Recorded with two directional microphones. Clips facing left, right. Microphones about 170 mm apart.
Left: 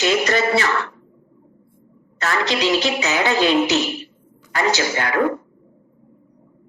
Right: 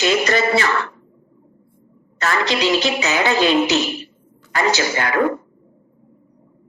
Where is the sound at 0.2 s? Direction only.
90° right.